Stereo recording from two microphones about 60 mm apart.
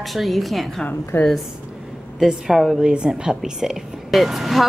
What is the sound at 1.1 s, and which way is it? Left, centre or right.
Speech, left.